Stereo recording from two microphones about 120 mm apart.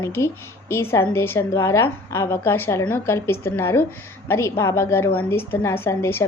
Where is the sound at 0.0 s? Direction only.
20° left (ahead or behind).